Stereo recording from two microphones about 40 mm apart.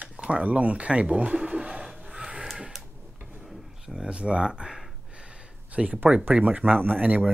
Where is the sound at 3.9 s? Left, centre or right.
Right.